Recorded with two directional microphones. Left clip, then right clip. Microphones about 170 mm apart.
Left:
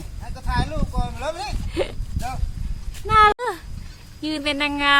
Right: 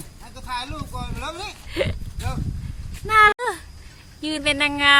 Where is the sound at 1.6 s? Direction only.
Centre (ahead or behind).